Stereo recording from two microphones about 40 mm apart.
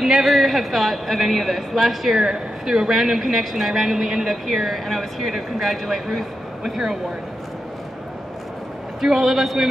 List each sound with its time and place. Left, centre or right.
0.0 s a man's voice: centre
4.5 s speech: centre
9.0 s speech: centre